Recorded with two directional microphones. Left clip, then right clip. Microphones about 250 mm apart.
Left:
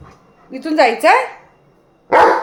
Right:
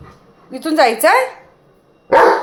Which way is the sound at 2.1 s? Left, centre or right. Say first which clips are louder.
Even; centre.